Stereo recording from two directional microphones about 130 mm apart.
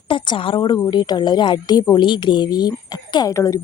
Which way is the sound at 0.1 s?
40° left (ahead or behind).